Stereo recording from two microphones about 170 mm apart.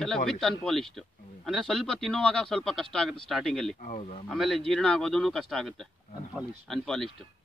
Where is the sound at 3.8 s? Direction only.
45° left (ahead or behind).